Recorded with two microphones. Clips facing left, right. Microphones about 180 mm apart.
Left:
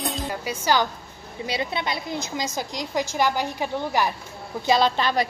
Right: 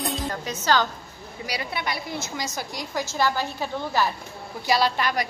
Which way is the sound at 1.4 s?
25° left (ahead or behind).